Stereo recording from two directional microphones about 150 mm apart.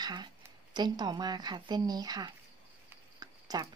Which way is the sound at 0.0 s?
30° right (ahead or behind).